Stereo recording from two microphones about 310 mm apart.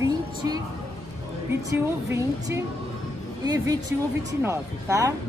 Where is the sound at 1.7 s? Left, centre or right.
Centre.